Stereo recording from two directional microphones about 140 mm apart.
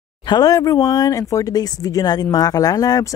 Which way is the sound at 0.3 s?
25° left (ahead or behind).